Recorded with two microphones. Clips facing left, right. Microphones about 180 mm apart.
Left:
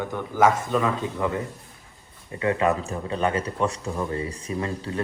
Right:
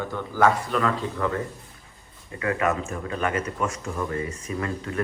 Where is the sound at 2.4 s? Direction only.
25° left (ahead or behind).